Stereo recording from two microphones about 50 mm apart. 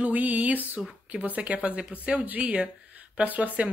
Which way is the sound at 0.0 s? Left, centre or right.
Right.